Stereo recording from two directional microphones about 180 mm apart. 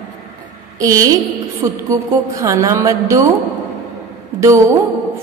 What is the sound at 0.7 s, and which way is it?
A woman's voice, 20° right (ahead or behind).